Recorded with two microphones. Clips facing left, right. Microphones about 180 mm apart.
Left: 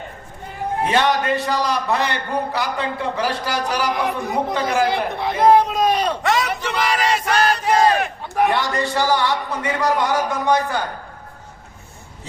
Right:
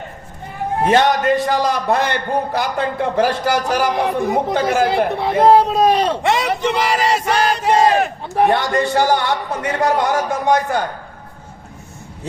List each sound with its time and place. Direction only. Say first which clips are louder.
0.9 s a man's voice: right 5 dB; 45° right (ahead or behind)
5.2 s speech: right 2 dB; 30° right (ahead or behind)
7.9 s a sound: right 4 dB; 40° right (ahead or behind)
8.5 s a man's voice: right 4 dB; 55° right (ahead or behind)